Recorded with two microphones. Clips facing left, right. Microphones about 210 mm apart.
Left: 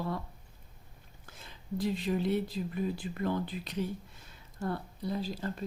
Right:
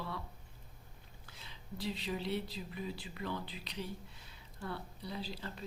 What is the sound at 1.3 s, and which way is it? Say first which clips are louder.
Speech: left 9 dB; 50° left (ahead or behind).